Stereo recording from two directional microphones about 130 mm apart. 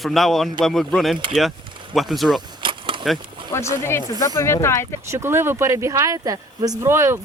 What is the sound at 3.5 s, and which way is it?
Speech, 20° left (ahead or behind).